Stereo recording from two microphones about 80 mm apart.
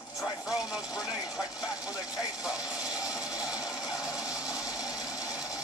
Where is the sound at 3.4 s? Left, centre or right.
Left.